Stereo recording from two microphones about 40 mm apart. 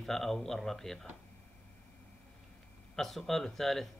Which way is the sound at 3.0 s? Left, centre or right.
Centre.